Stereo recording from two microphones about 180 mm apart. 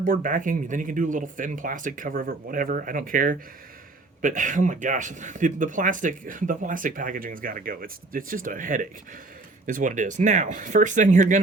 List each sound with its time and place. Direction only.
0.0 s speech: 50° right (ahead or behind)